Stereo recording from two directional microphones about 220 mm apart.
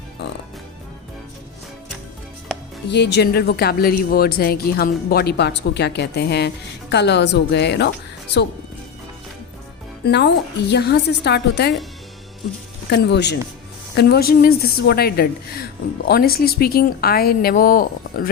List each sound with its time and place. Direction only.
2.9 s a woman's voice: 50° left (ahead or behind)
10.0 s a woman's voice: 50° left (ahead or behind)
12.9 s a woman's voice: 50° left (ahead or behind)